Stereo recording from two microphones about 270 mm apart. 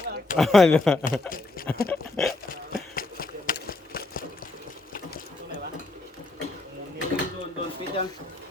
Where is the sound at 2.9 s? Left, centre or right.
Left.